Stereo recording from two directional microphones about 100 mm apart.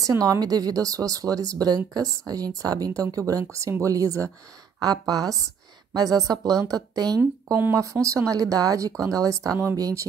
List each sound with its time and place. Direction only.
0.0 s speech: 35° right (ahead or behind)
7.7 s speech: 30° right (ahead or behind)